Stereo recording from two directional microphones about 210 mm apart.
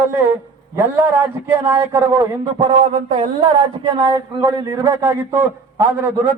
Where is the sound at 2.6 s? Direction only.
25° right (ahead or behind).